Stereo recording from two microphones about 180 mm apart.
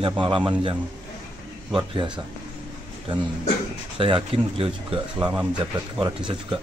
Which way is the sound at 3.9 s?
30° right (ahead or behind).